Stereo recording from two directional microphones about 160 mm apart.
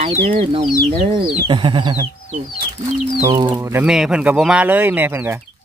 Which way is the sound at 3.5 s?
10° right (ahead or behind).